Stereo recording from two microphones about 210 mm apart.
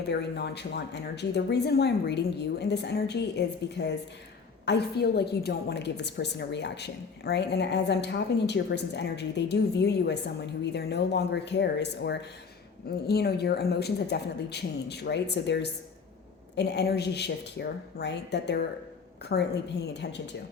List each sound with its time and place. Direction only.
0.0 s a woman's voice: 55° left (ahead or behind)